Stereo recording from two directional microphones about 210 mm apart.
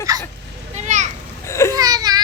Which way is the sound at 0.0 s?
15° right (ahead or behind).